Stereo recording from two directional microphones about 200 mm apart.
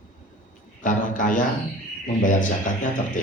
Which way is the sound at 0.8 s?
40° left (ahead or behind).